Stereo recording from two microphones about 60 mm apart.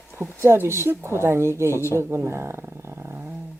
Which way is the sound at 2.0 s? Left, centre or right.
Right.